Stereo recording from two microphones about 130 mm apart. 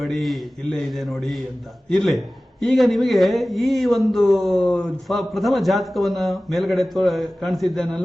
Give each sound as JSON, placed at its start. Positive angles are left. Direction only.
{"t": 0.0, "sound": "a man's voice", "side_deg": 0}